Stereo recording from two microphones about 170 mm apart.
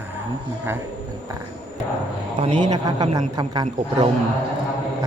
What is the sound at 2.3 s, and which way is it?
Speech, 35° right (ahead or behind).